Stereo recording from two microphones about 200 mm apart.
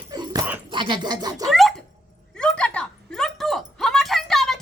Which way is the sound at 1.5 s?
Centre (ahead or behind).